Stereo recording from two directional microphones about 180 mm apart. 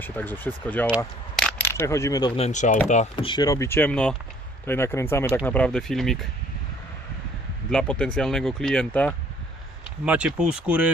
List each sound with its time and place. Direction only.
0.0 s speech: 10° left (ahead or behind)
1.4 s coin: 5° left (ahead or behind); by 2.4 s 20° left (ahead or behind)
2.4 s speech: 40° left (ahead or behind)
3.2 s speech: 20° left (ahead or behind); by 6.2 s centre (ahead or behind)
7.7 s speech: 5° left (ahead or behind)
10.1 s speech: 5° right (ahead or behind)